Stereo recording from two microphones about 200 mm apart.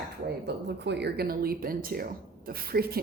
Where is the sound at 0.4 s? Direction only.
55° right (ahead or behind).